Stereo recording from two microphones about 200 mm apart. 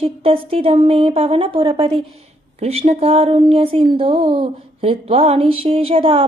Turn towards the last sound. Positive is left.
turn(degrees=-25)  # may be behind; listen again after turning